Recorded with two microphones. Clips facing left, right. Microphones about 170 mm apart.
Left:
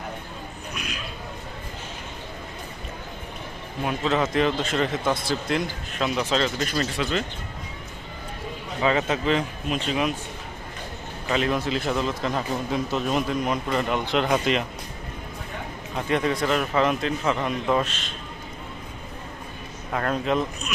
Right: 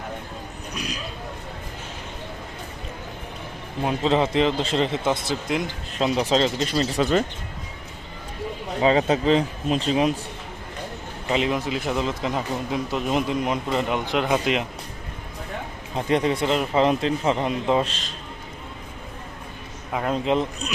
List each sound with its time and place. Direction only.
0.7 s a sound: 35° right (ahead or behind)
3.8 s a man's voice: 30° right (ahead or behind)
6.0 s a man's voice: 30° right (ahead or behind)
6.9 s speech: 40° right (ahead or behind)
8.8 s speech: 30° right (ahead or behind)
11.3 s speech: 20° right (ahead or behind)
16.0 s a man's voice: 30° right (ahead or behind)
19.9 s speech: 10° right (ahead or behind)
20.2 s a man's voice: 25° right (ahead or behind)